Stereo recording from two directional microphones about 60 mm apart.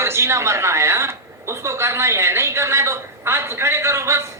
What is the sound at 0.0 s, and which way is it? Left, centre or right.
A woman's voice, right.